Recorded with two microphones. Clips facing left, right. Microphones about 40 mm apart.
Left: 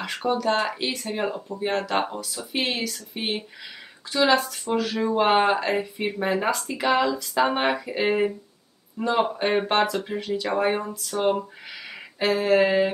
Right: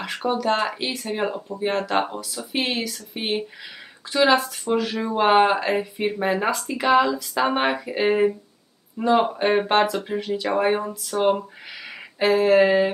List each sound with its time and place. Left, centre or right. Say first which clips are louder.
0.0 s speech: right 1 dB; centre